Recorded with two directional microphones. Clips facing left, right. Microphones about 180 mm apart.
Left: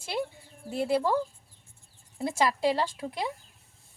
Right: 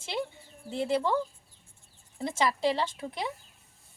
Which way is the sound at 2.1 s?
10° left (ahead or behind).